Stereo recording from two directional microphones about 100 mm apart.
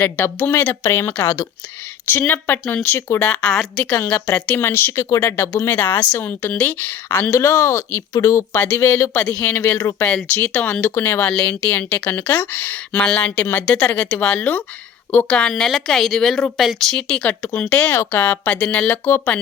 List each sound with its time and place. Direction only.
0.0 s speech: 20° left (ahead or behind)
3.2 s speech: 10° left (ahead or behind)
3.9 s speech: 20° left (ahead or behind)
7.3 s speech: 30° left (ahead or behind)